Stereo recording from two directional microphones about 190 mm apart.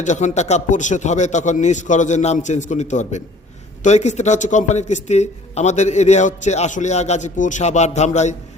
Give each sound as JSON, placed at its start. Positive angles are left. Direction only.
{"t": 0.0, "sound": "a man's voice", "side_deg": 40}